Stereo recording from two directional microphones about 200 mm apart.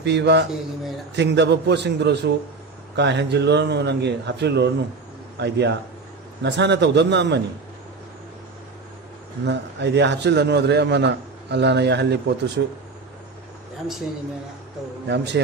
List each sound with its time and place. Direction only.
0.0 s a man's voice: 60° right (ahead or behind)
9.4 s a man's voice: 60° right (ahead or behind)
15.0 s a man's voice: 60° right (ahead or behind)